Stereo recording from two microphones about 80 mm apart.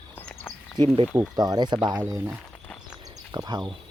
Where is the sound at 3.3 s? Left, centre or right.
Right.